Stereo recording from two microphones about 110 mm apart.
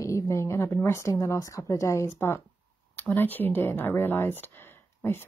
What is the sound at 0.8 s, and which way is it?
Speech, 25° left (ahead or behind).